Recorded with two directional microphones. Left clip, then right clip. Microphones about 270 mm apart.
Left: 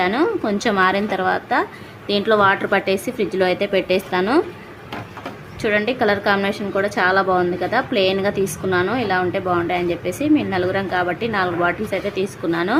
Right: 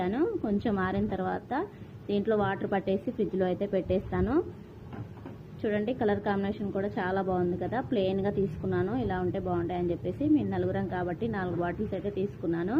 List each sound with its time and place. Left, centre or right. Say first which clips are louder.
0.0 s speech: left 11 dB; centre
5.6 s speech: left 11 dB; centre